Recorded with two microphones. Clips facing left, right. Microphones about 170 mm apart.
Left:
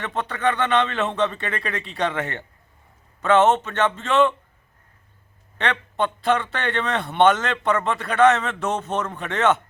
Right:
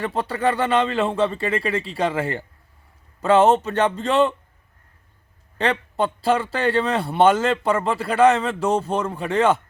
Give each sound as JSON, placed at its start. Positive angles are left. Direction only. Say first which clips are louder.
{"t": 0.0, "sound": "speech", "louder": "right 2 dB", "side_deg": -35}
{"t": 5.5, "sound": "speech", "louder": "right 2 dB", "side_deg": -30}